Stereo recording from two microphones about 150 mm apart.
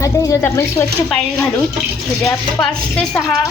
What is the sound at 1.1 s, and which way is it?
Speech, 5° left (ahead or behind).